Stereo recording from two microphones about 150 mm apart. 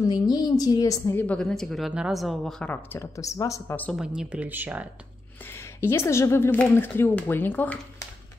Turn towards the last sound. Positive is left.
turn(degrees=10)  # may be behind; listen again after turning